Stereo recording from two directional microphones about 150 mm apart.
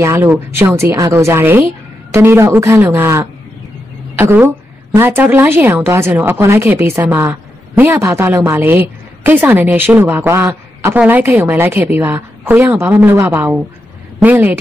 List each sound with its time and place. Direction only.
0.0 s a woman's voice: 15° right (ahead or behind)